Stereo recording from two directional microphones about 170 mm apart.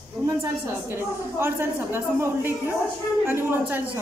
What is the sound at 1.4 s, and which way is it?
A woman's voice, 15° right (ahead or behind).